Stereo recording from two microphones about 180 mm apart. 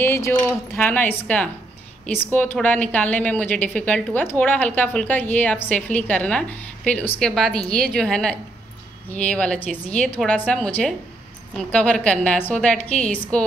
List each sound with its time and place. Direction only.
0.0 s a woman's voice: 15° left (ahead or behind)